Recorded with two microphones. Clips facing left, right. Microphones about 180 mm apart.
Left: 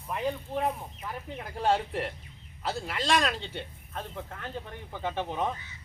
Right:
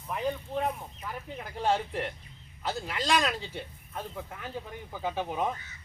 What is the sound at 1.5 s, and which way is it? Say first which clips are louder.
Speech: left 1 dB; centre (ahead or behind).